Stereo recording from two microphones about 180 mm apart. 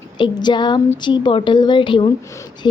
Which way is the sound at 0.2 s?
25° left (ahead or behind).